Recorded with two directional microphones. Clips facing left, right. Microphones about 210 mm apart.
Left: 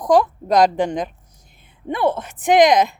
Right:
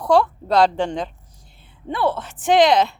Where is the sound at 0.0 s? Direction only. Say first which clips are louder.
Left 1 dB; 15° left (ahead or behind).